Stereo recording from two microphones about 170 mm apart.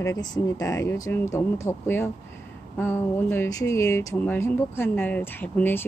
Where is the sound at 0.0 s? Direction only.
20° left (ahead or behind).